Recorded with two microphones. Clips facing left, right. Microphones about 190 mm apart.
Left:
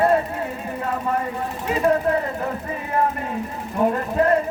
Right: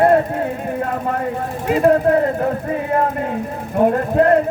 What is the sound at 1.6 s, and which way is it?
Speech, 50° right (ahead or behind).